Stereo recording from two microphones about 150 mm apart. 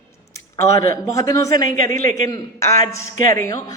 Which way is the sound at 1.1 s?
20° left (ahead or behind).